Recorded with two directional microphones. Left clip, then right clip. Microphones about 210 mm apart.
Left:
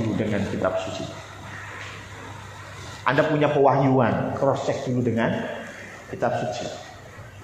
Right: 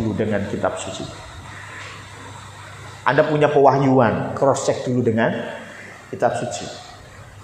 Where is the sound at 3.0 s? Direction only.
40° right (ahead or behind).